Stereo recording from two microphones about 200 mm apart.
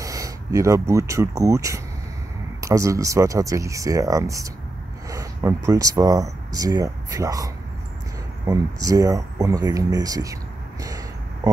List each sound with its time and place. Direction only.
0.0 s speech: 15° right (ahead or behind)